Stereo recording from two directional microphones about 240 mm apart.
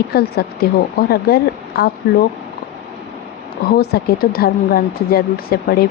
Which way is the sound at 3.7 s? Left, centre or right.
Left.